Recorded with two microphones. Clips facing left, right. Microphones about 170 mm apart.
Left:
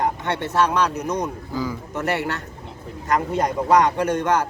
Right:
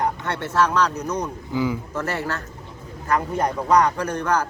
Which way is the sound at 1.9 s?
20° left (ahead or behind).